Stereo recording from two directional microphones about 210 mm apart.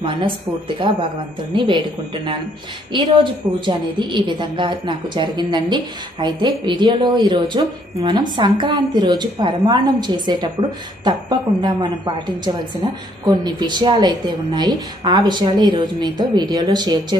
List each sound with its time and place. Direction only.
0.0 s a woman's voice: 25° right (ahead or behind)
3.5 s a woman's voice: 20° right (ahead or behind)